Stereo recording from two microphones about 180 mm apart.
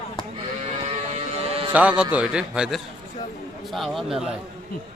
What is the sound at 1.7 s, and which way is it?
A man's voice, 10° right (ahead or behind).